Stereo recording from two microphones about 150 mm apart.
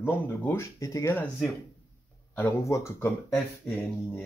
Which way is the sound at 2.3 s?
15° left (ahead or behind).